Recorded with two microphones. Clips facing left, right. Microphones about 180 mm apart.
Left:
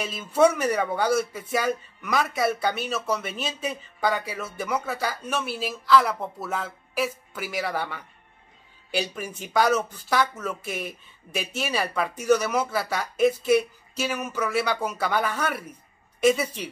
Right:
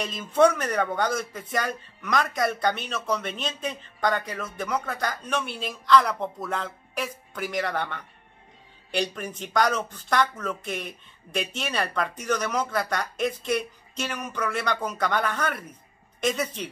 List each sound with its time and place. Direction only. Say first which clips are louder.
0.0 s speech: even; 5° left (ahead or behind)